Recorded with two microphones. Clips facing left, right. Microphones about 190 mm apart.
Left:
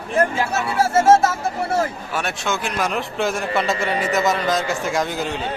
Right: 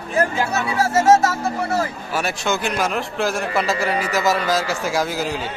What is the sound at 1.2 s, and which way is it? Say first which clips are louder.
Speech: even; 25° left (ahead or behind).